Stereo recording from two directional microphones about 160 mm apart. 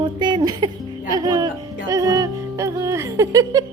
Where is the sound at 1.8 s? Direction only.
20° right (ahead or behind).